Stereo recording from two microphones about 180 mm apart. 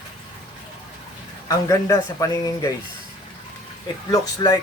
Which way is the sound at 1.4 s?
20° left (ahead or behind).